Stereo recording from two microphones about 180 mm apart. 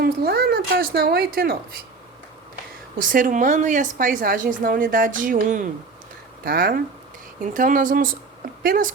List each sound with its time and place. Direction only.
0.0 s speech: 60° right (ahead or behind)
3.0 s a woman's voice: 50° right (ahead or behind)
6.4 s speech: 55° right (ahead or behind)
7.4 s a woman's voice: 45° right (ahead or behind)